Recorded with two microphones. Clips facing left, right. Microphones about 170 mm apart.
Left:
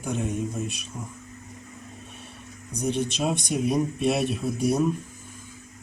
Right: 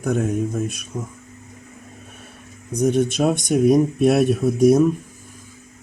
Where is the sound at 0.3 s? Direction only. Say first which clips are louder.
Right 6 dB; 50° right (ahead or behind).